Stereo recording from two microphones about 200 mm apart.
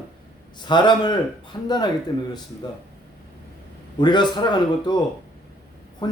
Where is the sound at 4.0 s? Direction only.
20° left (ahead or behind).